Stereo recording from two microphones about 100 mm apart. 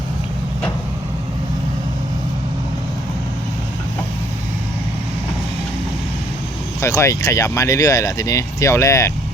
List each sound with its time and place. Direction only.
6.8 s speech: 30° left (ahead or behind)